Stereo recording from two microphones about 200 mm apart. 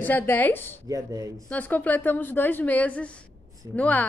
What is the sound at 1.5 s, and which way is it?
A woman's voice, 10° left (ahead or behind).